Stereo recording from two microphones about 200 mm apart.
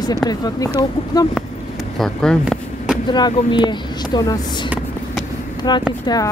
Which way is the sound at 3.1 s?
20° left (ahead or behind).